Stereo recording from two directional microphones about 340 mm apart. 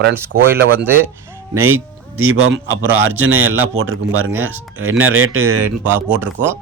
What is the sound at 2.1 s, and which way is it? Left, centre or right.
A man's voice, right.